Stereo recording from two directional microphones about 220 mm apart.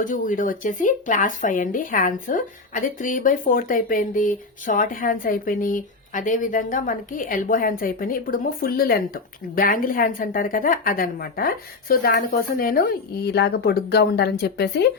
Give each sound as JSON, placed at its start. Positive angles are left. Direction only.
{"t": 0.0, "sound": "speech", "side_deg": 35}